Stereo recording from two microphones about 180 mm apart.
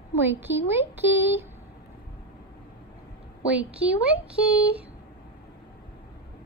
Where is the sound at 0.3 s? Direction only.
10° right (ahead or behind).